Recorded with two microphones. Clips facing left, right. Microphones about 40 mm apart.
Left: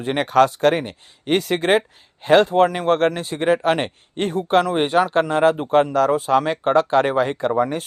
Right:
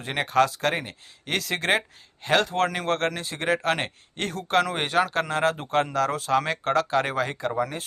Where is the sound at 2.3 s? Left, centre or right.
Left.